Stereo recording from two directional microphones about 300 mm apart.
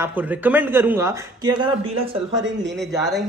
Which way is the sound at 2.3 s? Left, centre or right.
Right.